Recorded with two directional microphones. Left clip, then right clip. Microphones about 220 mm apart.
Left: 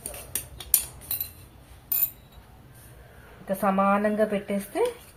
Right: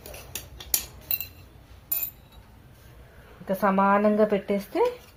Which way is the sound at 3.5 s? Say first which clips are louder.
Right 1 dB; 30° right (ahead or behind).